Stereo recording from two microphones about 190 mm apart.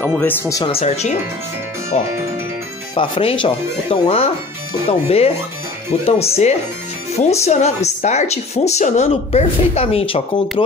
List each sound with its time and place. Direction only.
0.2 s speech: 10° left (ahead or behind)
0.7 s speech: 35° left (ahead or behind)
2.9 s speech: 30° left (ahead or behind)